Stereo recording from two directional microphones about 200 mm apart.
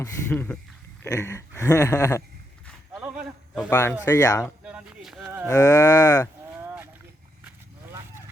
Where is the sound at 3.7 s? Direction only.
10° left (ahead or behind).